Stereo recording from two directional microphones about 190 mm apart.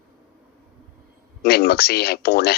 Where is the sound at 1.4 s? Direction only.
55° left (ahead or behind).